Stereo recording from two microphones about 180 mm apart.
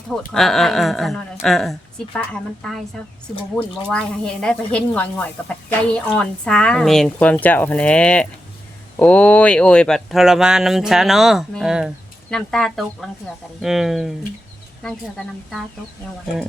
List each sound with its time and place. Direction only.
0.3 s speech: centre (ahead or behind)
3.8 s speech: 5° left (ahead or behind)